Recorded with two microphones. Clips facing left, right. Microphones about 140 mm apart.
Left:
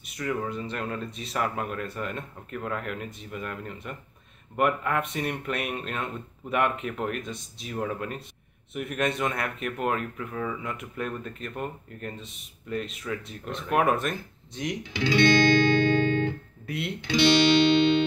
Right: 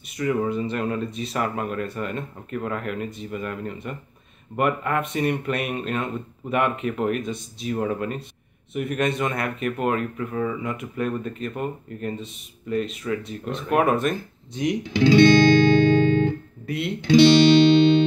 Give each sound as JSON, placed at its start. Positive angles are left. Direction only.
{"t": 0.0, "sound": "speech", "side_deg": -5}
{"t": 14.9, "sound": "music", "side_deg": -35}
{"t": 16.6, "sound": "speech", "side_deg": 0}
{"t": 17.1, "sound": "music", "side_deg": -30}